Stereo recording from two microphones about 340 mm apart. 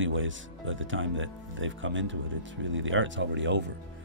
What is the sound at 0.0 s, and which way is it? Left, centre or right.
Speech, right.